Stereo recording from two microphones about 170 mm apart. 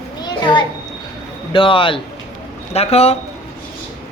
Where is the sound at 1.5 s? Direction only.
30° left (ahead or behind).